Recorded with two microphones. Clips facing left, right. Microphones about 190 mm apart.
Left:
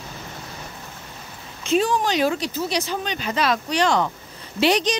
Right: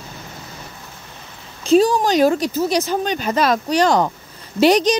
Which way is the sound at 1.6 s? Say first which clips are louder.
Right 6 dB; 40° right (ahead or behind).